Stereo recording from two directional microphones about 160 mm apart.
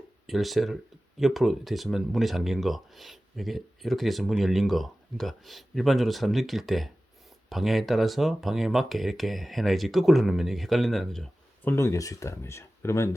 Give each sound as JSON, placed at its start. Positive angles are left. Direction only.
{"t": 0.3, "sound": "speech", "side_deg": 0}
{"t": 11.7, "sound": "speech", "side_deg": 15}